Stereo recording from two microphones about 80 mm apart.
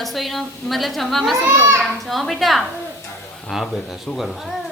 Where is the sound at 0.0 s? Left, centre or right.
Centre.